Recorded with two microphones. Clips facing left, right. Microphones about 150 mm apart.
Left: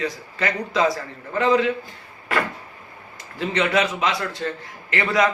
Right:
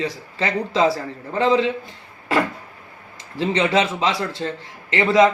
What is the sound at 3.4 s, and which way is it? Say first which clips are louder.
Speech: right 2 dB; 30° right (ahead or behind).